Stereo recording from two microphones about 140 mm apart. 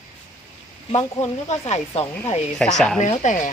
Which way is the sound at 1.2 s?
55° left (ahead or behind).